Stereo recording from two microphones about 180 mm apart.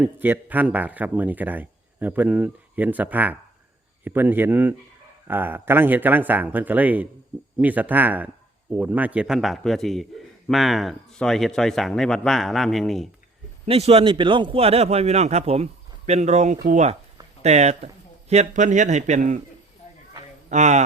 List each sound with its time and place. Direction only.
0.0 s speech: 10° right (ahead or behind)
13.7 s a man's voice: 35° right (ahead or behind)
20.5 s a man's voice: 40° right (ahead or behind)